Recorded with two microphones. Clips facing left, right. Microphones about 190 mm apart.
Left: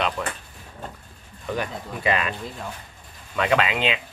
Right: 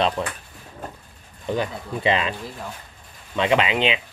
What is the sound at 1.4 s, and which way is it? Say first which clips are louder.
Speech: right 3 dB; 25° right (ahead or behind).